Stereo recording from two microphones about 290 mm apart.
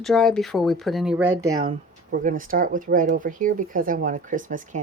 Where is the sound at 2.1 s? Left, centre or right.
Right.